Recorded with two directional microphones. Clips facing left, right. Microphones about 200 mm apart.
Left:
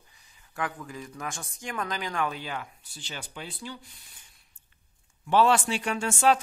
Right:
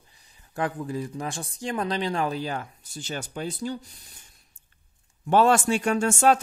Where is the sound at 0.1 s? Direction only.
35° right (ahead or behind).